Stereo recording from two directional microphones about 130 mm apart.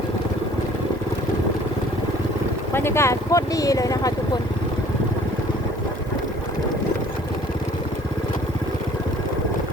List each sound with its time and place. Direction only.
2.7 s speech: 20° left (ahead or behind)